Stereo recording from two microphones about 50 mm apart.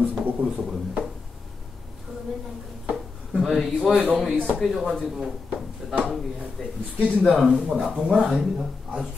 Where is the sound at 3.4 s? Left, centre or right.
Centre.